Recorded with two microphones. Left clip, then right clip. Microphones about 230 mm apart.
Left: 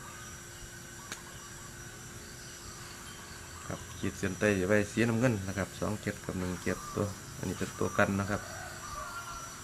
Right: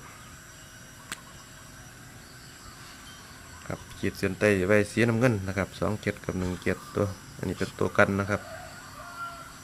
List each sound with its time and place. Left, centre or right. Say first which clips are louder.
4.0 s speech: right 6 dB; right